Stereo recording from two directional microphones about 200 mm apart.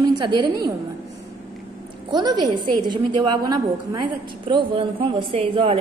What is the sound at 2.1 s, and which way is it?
A woman's voice, 20° right (ahead or behind).